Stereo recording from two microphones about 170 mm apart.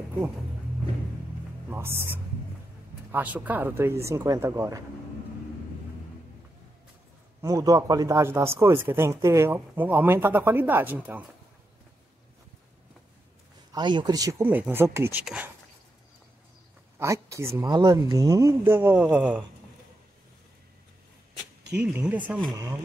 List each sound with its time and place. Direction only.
1.7 s speech: 15° right (ahead or behind)
3.1 s speech: 10° right (ahead or behind)
7.4 s speech: 20° right (ahead or behind)
13.7 s speech: 25° right (ahead or behind)
14.4 s speech: 10° right (ahead or behind)
17.0 s speech: 15° right (ahead or behind)
21.9 s speech: 10° right (ahead or behind)
22.5 s speech: 20° right (ahead or behind)